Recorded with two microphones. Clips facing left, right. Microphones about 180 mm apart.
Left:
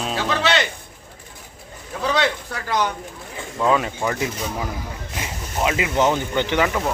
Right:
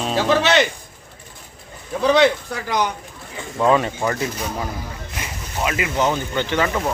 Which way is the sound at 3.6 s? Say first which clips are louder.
Right 3 dB; centre (ahead or behind).